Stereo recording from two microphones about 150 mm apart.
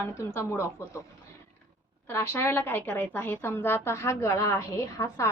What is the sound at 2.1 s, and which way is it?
A woman's voice, 15° left (ahead or behind).